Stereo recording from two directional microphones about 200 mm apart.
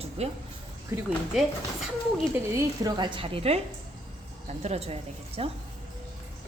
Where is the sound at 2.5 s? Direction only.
20° right (ahead or behind).